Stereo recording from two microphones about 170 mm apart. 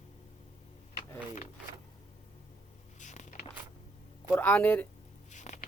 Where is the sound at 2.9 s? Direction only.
45° left (ahead or behind).